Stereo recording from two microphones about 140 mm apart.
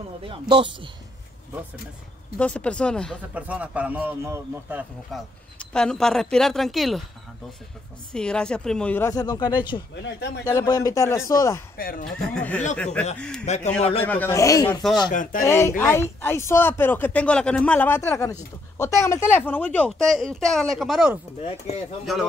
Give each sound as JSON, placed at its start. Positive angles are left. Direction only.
{"t": 0.3, "sound": "speech", "side_deg": -40}
{"t": 2.3, "sound": "speech", "side_deg": 10}
{"t": 3.3, "sound": "a man's voice", "side_deg": -10}
{"t": 5.1, "sound": "speech", "side_deg": 5}
{"t": 8.1, "sound": "speech", "side_deg": 5}
{"t": 9.1, "sound": "a man's voice", "side_deg": 25}
{"t": 11.7, "sound": "speech", "side_deg": 90}
{"t": 12.4, "sound": "speech", "side_deg": 10}
{"t": 13.5, "sound": "a man's voice", "side_deg": 50}
{"t": 14.0, "sound": "a man's voice", "side_deg": 15}
{"t": 15.0, "sound": "speech", "side_deg": 75}
{"t": 15.4, "sound": "a man's voice", "side_deg": 20}
{"t": 21.4, "sound": "a man's voice", "side_deg": 45}